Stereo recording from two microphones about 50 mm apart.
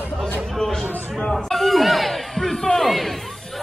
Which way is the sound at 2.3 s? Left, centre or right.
Centre.